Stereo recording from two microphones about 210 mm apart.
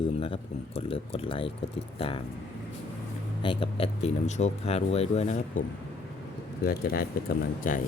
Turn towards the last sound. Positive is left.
turn(degrees=40)  # may be behind; listen again after turning